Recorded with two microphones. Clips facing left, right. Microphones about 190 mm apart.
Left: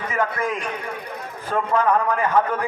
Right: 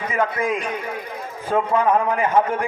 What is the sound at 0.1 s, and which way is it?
A man's voice, 20° right (ahead or behind).